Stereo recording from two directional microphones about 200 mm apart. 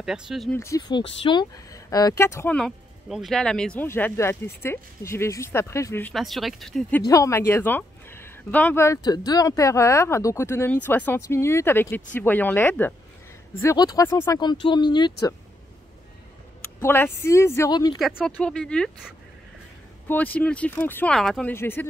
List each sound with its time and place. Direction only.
0.0 s speech: centre (ahead or behind)
0.6 s speech: 15° left (ahead or behind)
6.1 s speech: centre (ahead or behind)
7.1 s speech: 15° left (ahead or behind)
16.8 s speech: 10° left (ahead or behind)
17.9 s speech: centre (ahead or behind)
20.1 s speech: 5° left (ahead or behind)